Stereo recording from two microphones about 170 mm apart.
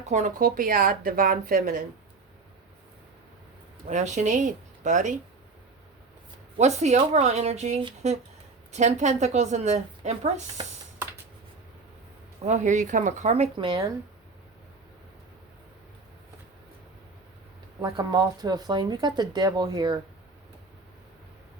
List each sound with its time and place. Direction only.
0.0 s speech: 45° right (ahead or behind)
3.8 s a woman's voice: 45° right (ahead or behind)
6.6 s a woman's voice: 40° right (ahead or behind)
12.5 s a woman's voice: 45° right (ahead or behind); by 13.8 s 30° right (ahead or behind)
17.8 s speech: 25° right (ahead or behind)